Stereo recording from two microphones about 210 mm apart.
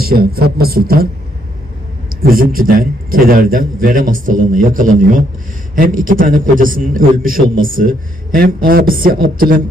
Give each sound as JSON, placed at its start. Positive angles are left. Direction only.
{"t": 0.0, "sound": "speech", "side_deg": -45}
{"t": 2.2, "sound": "a man's voice", "side_deg": -40}